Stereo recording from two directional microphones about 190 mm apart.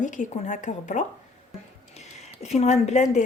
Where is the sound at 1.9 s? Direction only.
35° left (ahead or behind).